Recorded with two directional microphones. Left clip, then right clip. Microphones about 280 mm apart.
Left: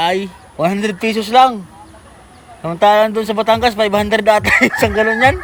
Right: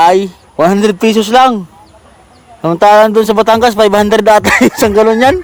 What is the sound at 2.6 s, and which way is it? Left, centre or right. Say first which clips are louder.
Speech: right 6 dB; right.